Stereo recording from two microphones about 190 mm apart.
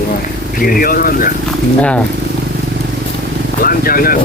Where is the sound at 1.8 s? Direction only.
5° left (ahead or behind).